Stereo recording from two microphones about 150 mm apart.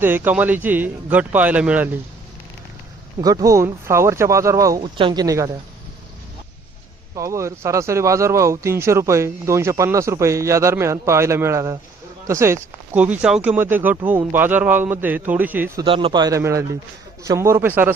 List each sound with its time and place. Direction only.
0.0 s speech: 10° right (ahead or behind)
3.2 s speech: 25° right (ahead or behind)
7.2 s speech: 20° right (ahead or behind)
15.8 s speech: 35° right (ahead or behind); by 17.9 s 15° right (ahead or behind)